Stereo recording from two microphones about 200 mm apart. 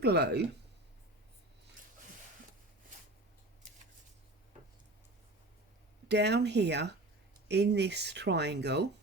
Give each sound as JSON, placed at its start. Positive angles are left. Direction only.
{"t": 0.0, "sound": "speech", "side_deg": -55}
{"t": 6.1, "sound": "speech", "side_deg": -60}